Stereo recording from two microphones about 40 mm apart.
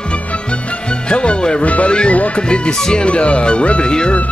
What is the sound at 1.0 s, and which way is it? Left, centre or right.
Music, left.